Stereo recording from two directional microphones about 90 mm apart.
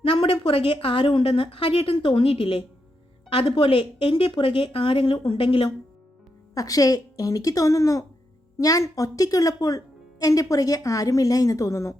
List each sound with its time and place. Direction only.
0.0 s a woman's voice: 85° left
6.5 s speech: 40° left (ahead or behind)